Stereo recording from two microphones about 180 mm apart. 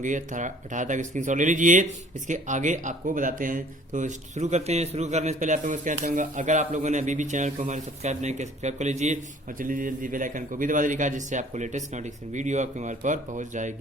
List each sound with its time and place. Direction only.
0.0 s speech: 45° right (ahead or behind)